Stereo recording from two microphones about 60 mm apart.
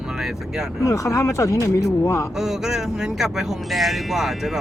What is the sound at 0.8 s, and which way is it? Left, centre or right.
Speech, left.